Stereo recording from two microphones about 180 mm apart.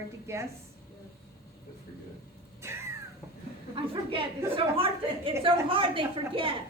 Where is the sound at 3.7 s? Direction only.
30° right (ahead or behind).